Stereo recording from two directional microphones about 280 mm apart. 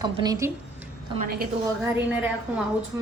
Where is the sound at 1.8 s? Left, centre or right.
Centre.